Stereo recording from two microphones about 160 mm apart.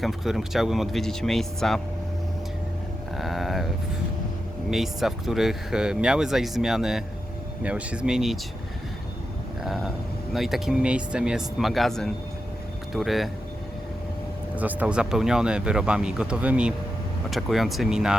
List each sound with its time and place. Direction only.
0.0 s speech: centre (ahead or behind)
3.2 s livestock: centre (ahead or behind)
4.7 s speech: centre (ahead or behind)
9.6 s speech: centre (ahead or behind)
14.5 s speech: 10° right (ahead or behind)